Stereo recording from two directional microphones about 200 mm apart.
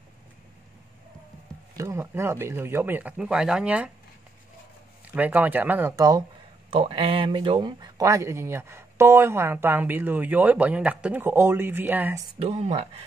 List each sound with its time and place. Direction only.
1.8 s speech: 15° right (ahead or behind)
5.0 s speech: 10° right (ahead or behind)
6.7 s speech: 30° right (ahead or behind); by 12.2 s 10° right (ahead or behind)
12.4 s speech: 30° right (ahead or behind)